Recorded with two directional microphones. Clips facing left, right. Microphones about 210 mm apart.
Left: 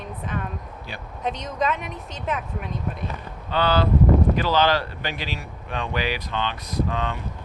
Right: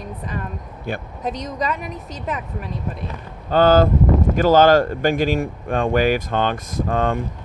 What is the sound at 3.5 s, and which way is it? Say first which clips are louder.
Speech: right 7 dB; 45° right (ahead or behind).